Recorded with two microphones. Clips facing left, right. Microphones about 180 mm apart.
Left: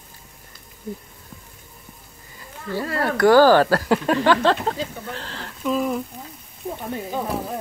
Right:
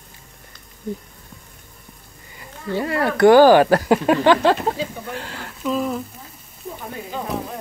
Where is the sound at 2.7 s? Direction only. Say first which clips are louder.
Right 3 dB; 20° right (ahead or behind).